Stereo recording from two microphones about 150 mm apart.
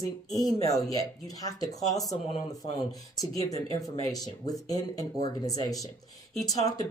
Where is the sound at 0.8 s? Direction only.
25° left (ahead or behind).